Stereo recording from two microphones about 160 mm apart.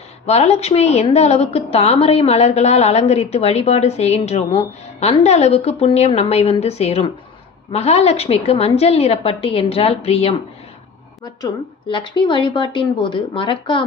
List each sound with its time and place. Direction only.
0.3 s a woman's voice: 40° left (ahead or behind)
11.2 s a woman's voice: 30° left (ahead or behind)